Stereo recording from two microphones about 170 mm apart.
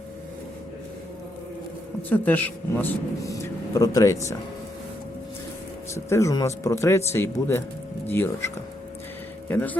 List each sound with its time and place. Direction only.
2.0 s speech: 10° left (ahead or behind)
5.9 s speech: 15° left (ahead or behind)